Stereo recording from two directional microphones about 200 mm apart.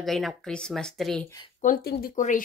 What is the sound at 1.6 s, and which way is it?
Speech, 45° left (ahead or behind).